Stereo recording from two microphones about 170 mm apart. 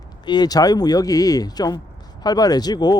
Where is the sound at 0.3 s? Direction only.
25° left (ahead or behind).